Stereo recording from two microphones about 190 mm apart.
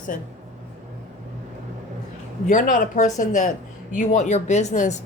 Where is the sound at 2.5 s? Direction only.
45° left (ahead or behind).